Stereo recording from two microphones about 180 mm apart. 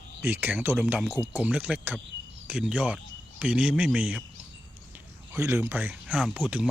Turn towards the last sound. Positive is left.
turn(degrees=-10)  # may be behind; listen again after turning